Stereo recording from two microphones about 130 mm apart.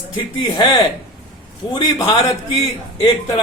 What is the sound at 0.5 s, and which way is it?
Speech, 40° left (ahead or behind).